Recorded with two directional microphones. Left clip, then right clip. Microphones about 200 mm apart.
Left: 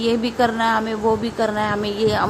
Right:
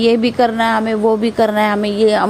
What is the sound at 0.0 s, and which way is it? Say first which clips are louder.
A woman's voice: right 6 dB; 30° right (ahead or behind).